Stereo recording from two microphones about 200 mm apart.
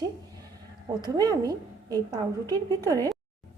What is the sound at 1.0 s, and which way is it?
A woman's voice, 20° right (ahead or behind).